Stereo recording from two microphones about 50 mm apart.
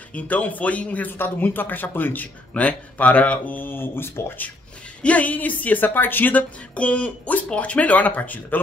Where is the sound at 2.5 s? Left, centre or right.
Left.